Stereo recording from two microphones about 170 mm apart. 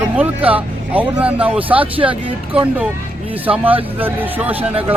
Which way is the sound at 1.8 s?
30° right (ahead or behind).